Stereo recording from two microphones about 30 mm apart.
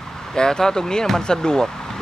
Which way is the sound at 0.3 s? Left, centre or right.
Centre.